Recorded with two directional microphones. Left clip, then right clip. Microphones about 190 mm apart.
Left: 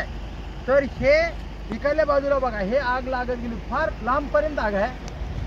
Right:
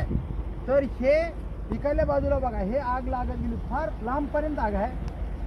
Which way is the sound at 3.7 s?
25° left (ahead or behind).